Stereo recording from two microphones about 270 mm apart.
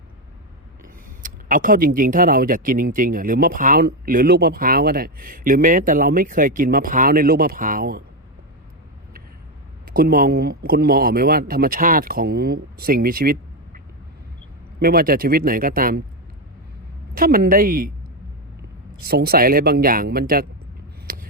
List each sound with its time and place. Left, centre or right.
1.2 s speech: right
9.8 s speech: right
14.8 s speech: right
17.2 s speech: right
19.0 s speech: right